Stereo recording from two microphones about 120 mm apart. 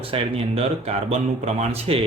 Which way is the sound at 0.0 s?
55° right (ahead or behind).